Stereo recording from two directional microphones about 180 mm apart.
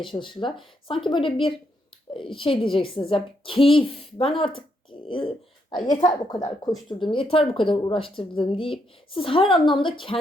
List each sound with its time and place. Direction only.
0.2 s speech: 25° left (ahead or behind)